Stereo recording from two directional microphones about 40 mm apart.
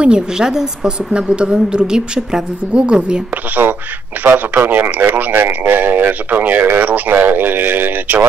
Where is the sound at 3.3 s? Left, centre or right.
Right.